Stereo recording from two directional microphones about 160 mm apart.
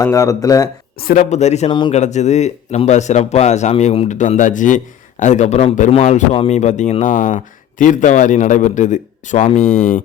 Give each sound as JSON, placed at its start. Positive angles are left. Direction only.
{"t": 0.0, "sound": "speech", "side_deg": 20}
{"t": 1.0, "sound": "a man's voice", "side_deg": 50}